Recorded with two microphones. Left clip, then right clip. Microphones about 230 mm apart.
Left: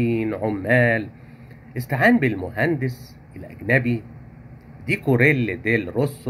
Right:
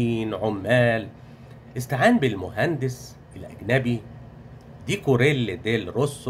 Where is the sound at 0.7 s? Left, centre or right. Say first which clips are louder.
Left 2 dB; centre.